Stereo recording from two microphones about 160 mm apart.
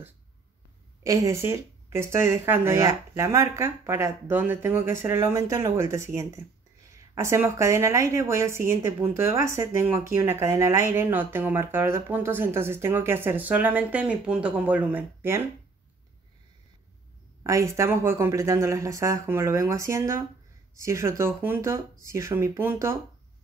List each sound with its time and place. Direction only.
1.0 s a woman's voice: 20° right (ahead or behind)
17.4 s a woman's voice: 20° right (ahead or behind)